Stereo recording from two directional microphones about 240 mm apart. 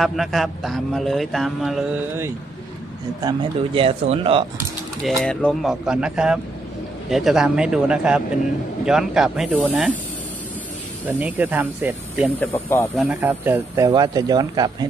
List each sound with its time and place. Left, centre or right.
0.0 s a man's voice: centre
3.3 s speech: right
5.0 s a man's voice: centre
11.1 s speech: centre
12.6 s speech: centre
13.0 s speech: centre